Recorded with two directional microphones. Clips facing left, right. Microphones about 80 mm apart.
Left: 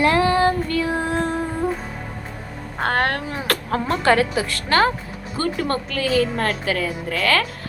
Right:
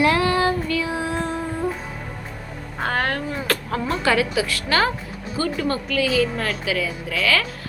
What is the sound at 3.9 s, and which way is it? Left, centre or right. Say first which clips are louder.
A woman's voice: left 3 dB; left.